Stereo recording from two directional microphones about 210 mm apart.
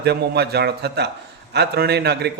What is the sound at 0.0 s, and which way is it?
A man's voice, 50° right (ahead or behind).